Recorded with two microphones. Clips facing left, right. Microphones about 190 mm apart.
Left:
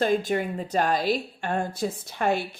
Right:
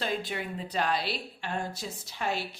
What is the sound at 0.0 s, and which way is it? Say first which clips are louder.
A woman's voice: left 9 dB; 45° left (ahead or behind).